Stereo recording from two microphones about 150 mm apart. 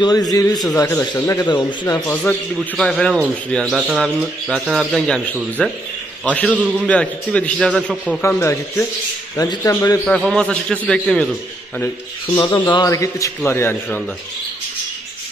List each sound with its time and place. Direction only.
0.0 s speech: 25° left (ahead or behind)
2.0 s a man's voice: 10° left (ahead or behind)
8.2 s a man's voice: 15° left (ahead or behind)
10.3 s speech: 5° left (ahead or behind)
12.4 s a man's voice: 30° left (ahead or behind); by 14.0 s 15° left (ahead or behind)